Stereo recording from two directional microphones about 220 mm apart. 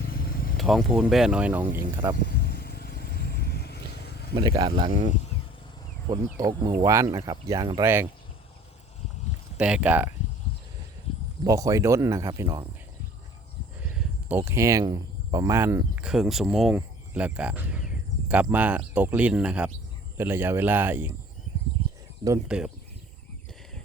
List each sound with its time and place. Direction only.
0.1 s vehicle: 40° left (ahead or behind)
0.5 s speech: centre (ahead or behind)
2.1 s vehicle: 45° left (ahead or behind)
4.4 s speech: 20° right (ahead or behind)
6.1 s speech: 20° right (ahead or behind)
9.6 s speech: 5° right (ahead or behind)
11.4 s speech: 15° right (ahead or behind)
13.8 s speech: 10° right (ahead or behind)
22.4 s speech: 5° right (ahead or behind)